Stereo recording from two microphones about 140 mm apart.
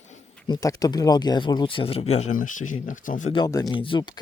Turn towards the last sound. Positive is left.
turn(degrees=35)  # may be behind; listen again after turning